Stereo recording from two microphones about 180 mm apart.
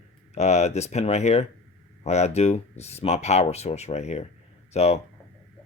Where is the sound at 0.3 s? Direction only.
40° left (ahead or behind).